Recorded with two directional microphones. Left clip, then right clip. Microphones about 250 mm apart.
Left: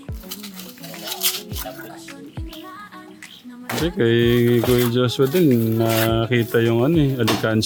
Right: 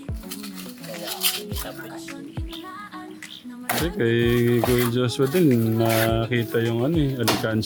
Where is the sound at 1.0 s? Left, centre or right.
Centre.